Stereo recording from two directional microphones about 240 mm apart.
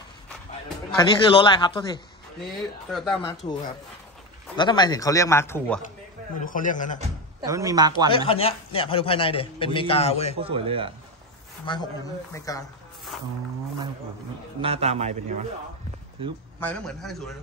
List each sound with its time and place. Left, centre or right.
0.9 s a man's voice: centre
2.4 s speech: centre
3.2 s a man's voice: left
4.6 s a man's voice: centre
6.4 s speech: left
7.4 s speech: centre
8.3 s a man's voice: left
10.3 s a man's voice: right
11.6 s a man's voice: centre
14.6 s a man's voice: right
16.5 s speech: centre